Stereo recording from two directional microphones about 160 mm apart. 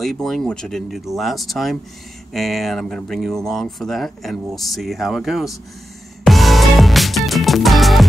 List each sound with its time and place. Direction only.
0.0 s speech: centre (ahead or behind)
6.2 s music: centre (ahead or behind)